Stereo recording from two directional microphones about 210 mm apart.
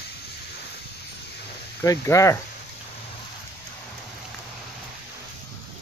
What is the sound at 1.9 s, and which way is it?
Speech, 15° left (ahead or behind).